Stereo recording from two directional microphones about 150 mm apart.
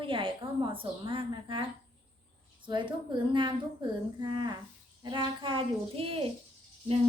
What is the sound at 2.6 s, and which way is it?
Speech, 30° right (ahead or behind).